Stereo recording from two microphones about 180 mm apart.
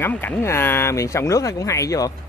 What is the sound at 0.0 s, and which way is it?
Speech, 10° left (ahead or behind).